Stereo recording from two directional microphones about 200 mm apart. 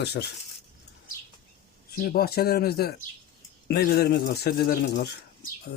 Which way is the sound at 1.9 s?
45° left (ahead or behind).